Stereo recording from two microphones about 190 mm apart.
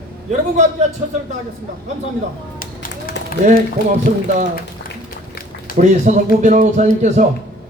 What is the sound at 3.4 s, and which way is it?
Speech, 40° right (ahead or behind).